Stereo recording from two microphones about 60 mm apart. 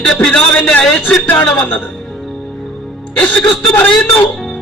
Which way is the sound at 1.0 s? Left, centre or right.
Left.